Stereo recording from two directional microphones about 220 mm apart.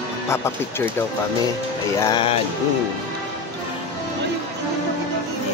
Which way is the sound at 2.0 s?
25° left (ahead or behind).